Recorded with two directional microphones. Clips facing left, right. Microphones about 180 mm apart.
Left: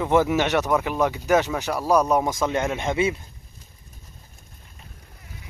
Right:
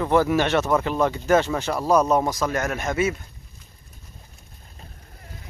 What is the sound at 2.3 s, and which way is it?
Speech, 25° left (ahead or behind).